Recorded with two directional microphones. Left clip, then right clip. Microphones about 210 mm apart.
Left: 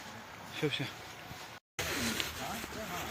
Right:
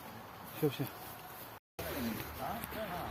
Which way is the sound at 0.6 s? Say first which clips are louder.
Left 1 dB; 35° right (ahead or behind).